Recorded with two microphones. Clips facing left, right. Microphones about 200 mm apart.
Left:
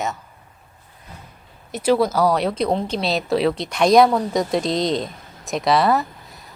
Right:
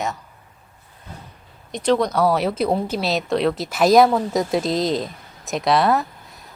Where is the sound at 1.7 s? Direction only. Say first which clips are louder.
Left 1 dB; 5° left (ahead or behind).